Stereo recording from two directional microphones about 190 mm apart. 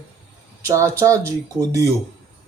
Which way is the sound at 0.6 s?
15° right (ahead or behind).